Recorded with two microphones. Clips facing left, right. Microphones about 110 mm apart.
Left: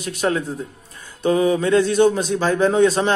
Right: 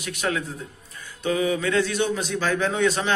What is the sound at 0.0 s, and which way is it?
Speech, 35° left (ahead or behind).